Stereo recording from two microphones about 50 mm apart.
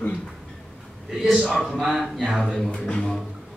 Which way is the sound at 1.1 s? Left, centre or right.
Centre.